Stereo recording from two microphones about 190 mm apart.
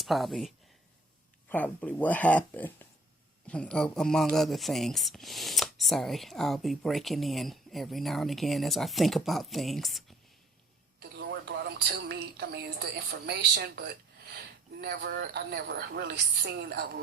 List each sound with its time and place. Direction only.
0.0 s speech: centre (ahead or behind)
11.3 s a sound: 60° right (ahead or behind)
12.0 s a woman's voice: 60° right (ahead or behind)